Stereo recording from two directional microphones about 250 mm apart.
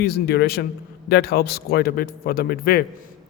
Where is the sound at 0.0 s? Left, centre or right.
Left.